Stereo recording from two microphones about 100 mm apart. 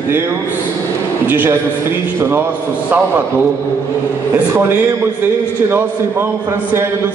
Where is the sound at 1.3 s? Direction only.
20° right (ahead or behind).